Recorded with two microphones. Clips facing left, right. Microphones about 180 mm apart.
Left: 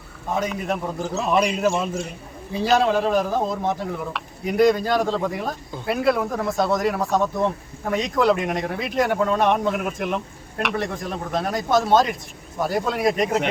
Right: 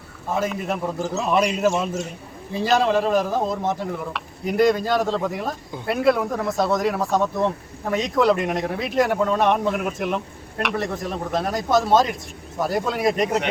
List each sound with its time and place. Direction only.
0.3 s speech: centre (ahead or behind)